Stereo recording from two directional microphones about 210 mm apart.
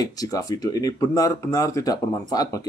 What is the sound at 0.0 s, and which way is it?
A man's voice, 15° left (ahead or behind).